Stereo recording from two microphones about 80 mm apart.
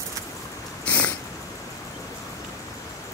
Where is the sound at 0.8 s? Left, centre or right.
Centre.